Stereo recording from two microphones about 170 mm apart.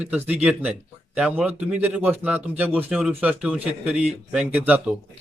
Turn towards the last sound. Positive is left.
turn(degrees=-10)  # may be behind; listen again after turning